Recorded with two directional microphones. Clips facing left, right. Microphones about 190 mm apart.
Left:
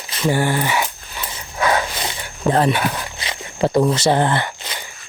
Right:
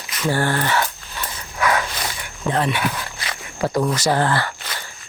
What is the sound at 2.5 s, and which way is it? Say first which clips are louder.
Speech: left 5 dB; 40° left (ahead or behind).